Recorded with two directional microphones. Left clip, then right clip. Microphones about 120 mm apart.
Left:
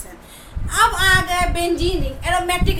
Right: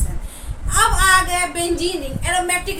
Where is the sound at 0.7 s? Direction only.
50° left (ahead or behind).